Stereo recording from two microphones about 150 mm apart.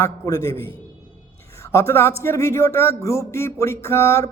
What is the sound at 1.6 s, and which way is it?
Speech, 20° left (ahead or behind).